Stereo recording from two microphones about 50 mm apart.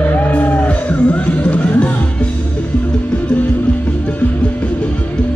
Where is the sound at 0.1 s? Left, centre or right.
Left.